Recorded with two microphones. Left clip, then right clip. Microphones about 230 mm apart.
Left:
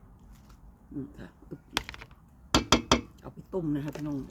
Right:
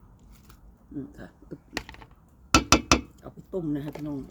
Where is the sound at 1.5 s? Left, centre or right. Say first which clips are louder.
Right 2 dB; centre.